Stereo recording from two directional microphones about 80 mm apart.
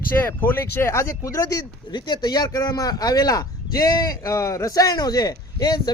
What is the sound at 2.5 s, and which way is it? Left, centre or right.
A man's voice, left.